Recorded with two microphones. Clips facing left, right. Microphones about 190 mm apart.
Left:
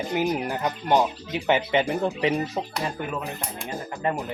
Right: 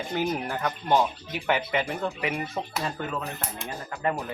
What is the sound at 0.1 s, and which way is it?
Speech, 15° left (ahead or behind).